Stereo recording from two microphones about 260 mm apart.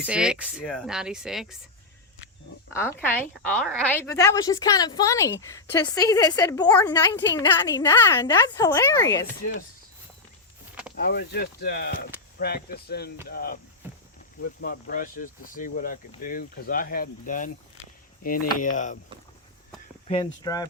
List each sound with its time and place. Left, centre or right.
0.0 s speech: centre
2.7 s a woman's voice: centre
10.9 s speech: left
20.1 s a woman's voice: centre